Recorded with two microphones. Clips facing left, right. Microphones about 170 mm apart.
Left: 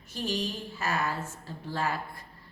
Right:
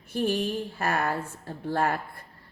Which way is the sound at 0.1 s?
55° right (ahead or behind).